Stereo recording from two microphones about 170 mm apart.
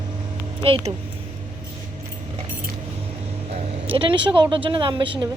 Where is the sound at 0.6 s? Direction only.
35° right (ahead or behind).